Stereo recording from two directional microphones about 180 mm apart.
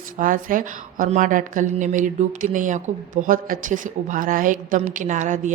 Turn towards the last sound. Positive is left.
turn(degrees=-45)  # may be behind; listen again after turning